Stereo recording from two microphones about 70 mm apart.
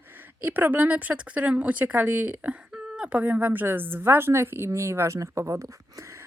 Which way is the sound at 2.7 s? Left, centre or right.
Centre.